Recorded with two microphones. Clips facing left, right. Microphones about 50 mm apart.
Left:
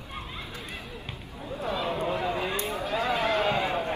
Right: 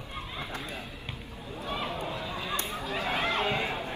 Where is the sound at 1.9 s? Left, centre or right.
Left.